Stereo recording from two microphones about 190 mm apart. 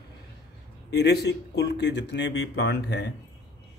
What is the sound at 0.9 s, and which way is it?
Speech, 60° left (ahead or behind).